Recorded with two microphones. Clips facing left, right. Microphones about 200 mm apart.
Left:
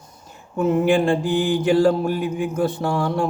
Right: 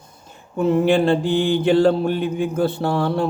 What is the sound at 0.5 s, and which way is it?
Mantra, 30° right (ahead or behind).